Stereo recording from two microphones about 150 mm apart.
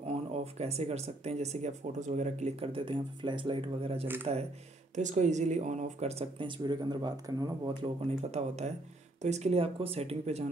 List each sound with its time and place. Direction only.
0.6 s speech: 45° right (ahead or behind)
4.9 s speech: 55° right (ahead or behind); by 7.7 s 25° right (ahead or behind)
7.8 s speech: 45° right (ahead or behind)